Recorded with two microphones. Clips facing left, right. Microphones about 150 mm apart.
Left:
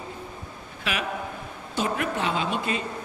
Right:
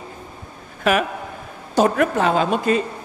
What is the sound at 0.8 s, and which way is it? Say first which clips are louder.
A man's voice: right 10 dB; 45° right (ahead or behind).